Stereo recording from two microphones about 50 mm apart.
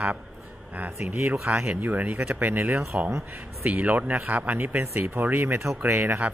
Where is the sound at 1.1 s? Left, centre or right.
Right.